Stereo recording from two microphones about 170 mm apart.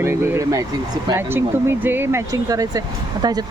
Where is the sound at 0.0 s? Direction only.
15° right (ahead or behind).